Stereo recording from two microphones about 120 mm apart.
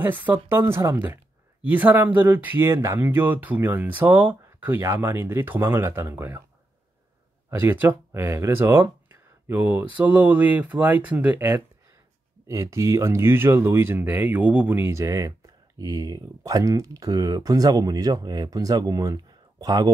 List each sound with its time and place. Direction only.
0.0 s speech: 15° right (ahead or behind)
7.4 s speech: 20° right (ahead or behind); by 19.9 s 35° right (ahead or behind)